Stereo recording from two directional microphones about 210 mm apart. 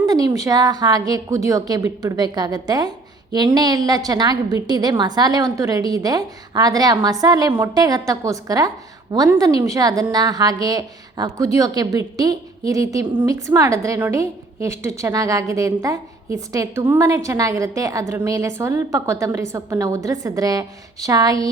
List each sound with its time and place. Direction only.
0.0 s a woman's voice: 20° right (ahead or behind)